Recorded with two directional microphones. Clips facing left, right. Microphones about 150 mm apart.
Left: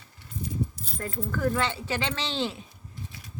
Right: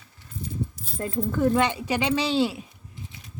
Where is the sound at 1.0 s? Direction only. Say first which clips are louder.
Right 5 dB; 20° right (ahead or behind).